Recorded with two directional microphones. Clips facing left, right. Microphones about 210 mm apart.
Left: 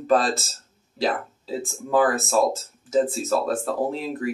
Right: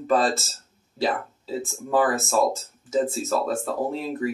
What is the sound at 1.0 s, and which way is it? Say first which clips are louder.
Speech: left 1 dB; centre (ahead or behind).